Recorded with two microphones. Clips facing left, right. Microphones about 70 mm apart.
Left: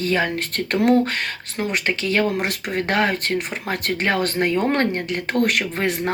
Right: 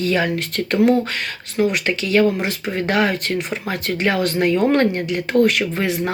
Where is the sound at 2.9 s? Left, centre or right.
Left.